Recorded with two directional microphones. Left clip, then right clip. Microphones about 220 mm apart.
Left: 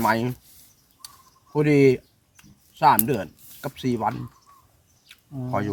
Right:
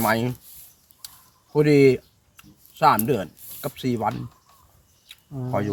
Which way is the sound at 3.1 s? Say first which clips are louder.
Right 2 dB; centre (ahead or behind).